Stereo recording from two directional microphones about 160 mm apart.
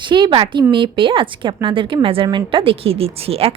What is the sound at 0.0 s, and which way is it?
A woman's voice, 30° right (ahead or behind).